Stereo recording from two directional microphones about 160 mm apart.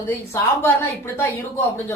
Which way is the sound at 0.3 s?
15° left (ahead or behind).